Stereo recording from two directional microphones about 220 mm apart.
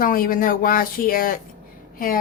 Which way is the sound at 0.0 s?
40° left (ahead or behind).